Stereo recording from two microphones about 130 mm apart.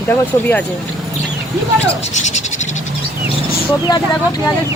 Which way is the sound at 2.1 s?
65° left (ahead or behind).